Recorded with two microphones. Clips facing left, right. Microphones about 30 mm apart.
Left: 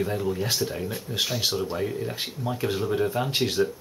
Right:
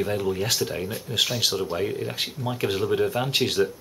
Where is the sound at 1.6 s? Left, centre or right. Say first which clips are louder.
Right 2 dB; centre.